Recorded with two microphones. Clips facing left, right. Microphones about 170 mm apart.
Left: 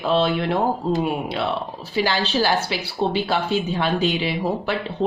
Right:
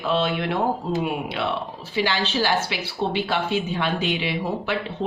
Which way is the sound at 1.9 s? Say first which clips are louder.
Left 2 dB; 40° left (ahead or behind).